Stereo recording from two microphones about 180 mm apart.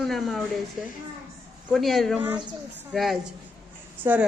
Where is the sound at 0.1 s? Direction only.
Centre (ahead or behind).